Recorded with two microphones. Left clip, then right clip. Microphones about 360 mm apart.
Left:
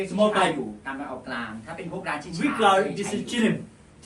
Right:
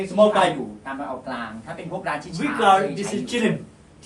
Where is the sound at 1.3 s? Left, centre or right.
Right.